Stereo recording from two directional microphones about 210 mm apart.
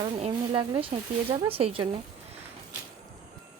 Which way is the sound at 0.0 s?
25° right (ahead or behind).